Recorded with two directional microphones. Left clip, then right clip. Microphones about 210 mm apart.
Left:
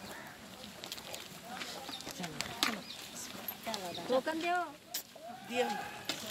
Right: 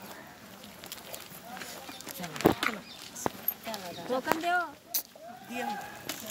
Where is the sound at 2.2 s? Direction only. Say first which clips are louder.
Right 9 dB; 20° left (ahead or behind).